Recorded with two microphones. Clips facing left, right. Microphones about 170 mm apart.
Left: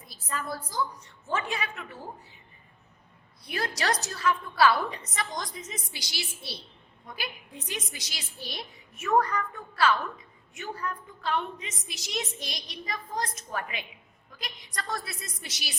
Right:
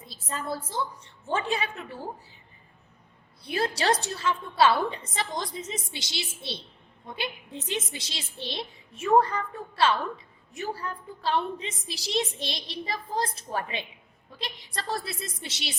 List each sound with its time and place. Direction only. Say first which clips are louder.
0.0 s a woman's voice: right 1 dB; 25° right (ahead or behind)
3.4 s a woman's voice: right 4 dB; 30° right (ahead or behind)